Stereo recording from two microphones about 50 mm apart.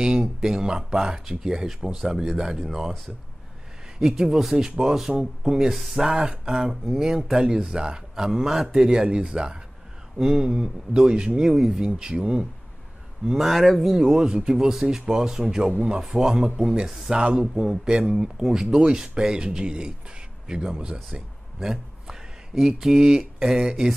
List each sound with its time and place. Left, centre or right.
0.4 s a man's voice: centre
4.0 s a man's voice: centre
13.5 s speech: centre
13.9 s a man's voice: centre